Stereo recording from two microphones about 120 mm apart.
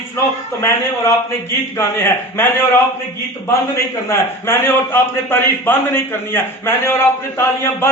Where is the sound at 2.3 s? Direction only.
20° left (ahead or behind).